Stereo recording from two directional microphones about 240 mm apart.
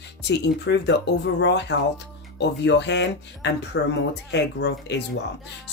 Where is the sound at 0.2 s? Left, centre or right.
Left.